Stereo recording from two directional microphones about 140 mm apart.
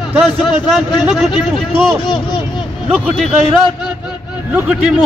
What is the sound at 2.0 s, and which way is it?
Speech, 35° left (ahead or behind).